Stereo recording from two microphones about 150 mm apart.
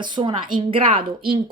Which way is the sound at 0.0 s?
30° right (ahead or behind).